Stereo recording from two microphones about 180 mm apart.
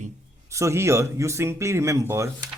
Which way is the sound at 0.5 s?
15° right (ahead or behind).